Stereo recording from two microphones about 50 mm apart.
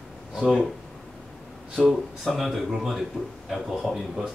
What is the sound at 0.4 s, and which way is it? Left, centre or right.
Speech, centre.